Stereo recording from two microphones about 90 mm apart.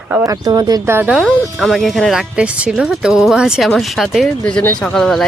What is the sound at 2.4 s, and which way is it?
Speech, 10° right (ahead or behind).